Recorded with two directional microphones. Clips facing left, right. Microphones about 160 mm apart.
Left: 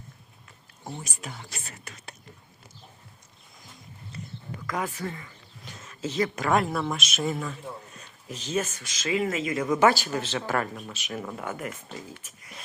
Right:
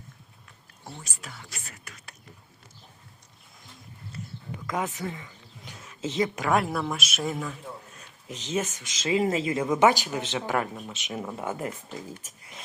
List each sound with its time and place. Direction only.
0.9 s speech: 15° left (ahead or behind)
4.5 s a sound: 20° right (ahead or behind)
6.0 s speech: 20° right (ahead or behind)
6.5 s a man's voice: 5° right (ahead or behind)
8.3 s speech: 20° right (ahead or behind)